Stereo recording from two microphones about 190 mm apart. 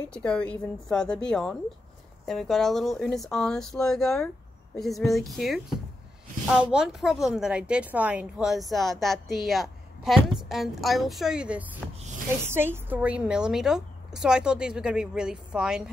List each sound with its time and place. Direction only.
0.1 s a woman's voice: 5° left (ahead or behind)